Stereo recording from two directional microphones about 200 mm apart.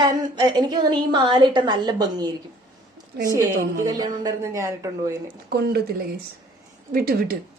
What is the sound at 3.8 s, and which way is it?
A woman's voice, 15° right (ahead or behind).